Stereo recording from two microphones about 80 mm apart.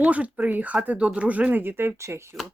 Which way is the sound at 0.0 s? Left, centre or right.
Centre.